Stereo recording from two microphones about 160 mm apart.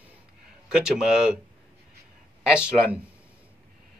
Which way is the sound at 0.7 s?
5° right (ahead or behind).